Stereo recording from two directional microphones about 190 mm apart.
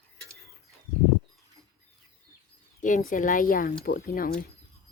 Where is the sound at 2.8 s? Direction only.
40° left (ahead or behind).